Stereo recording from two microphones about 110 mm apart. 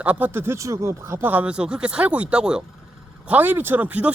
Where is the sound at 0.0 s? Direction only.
15° right (ahead or behind).